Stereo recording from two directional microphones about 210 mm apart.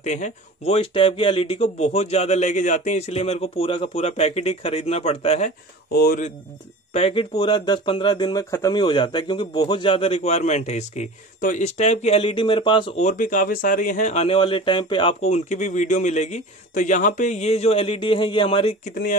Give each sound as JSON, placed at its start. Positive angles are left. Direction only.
{"t": 0.0, "sound": "speech", "side_deg": 35}
{"t": 5.9, "sound": "speech", "side_deg": 45}
{"t": 6.9, "sound": "speech", "side_deg": 30}